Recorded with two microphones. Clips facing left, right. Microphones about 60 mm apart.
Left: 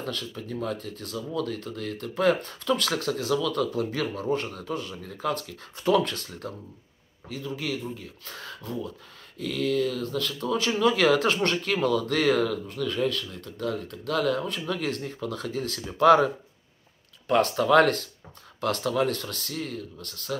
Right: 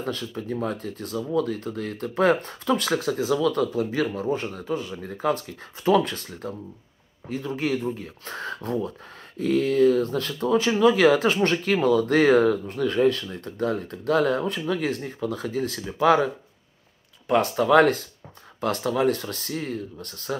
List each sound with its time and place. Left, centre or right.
0.0 s speech: centre
7.2 s speech: right
14.7 s speech: centre
17.3 s speech: centre; by 20.3 s right